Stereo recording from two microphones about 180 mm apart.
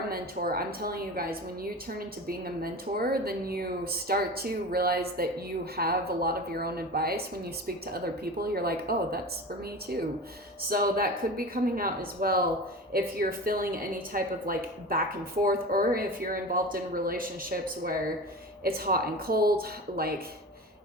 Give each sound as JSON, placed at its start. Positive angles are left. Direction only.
{"t": 0.1, "sound": "a woman's voice", "side_deg": -55}
{"t": 10.7, "sound": "a woman's voice", "side_deg": -55}